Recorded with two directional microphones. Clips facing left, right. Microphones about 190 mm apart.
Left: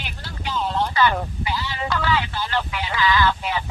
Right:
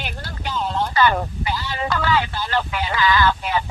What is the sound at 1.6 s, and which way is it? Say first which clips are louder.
Speech: right 2 dB; 45° right (ahead or behind).